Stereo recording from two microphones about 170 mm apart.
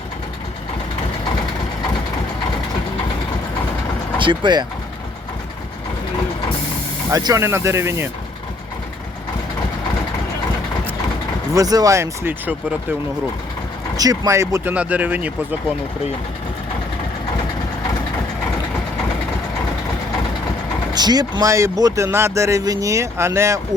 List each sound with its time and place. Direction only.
4.2 s speech: 25° right (ahead or behind)
7.1 s speech: 20° right (ahead or behind)
11.5 s speech: 20° right (ahead or behind)
13.9 s speech: 20° right (ahead or behind)
20.9 s speech: 25° right (ahead or behind)